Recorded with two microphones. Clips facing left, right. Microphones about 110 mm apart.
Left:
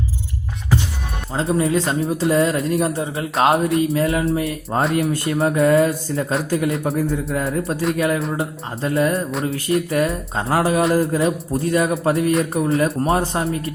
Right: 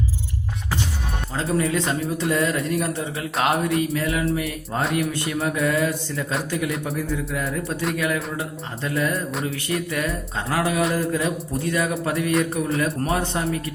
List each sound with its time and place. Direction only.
1.4 s speech: 30° left (ahead or behind)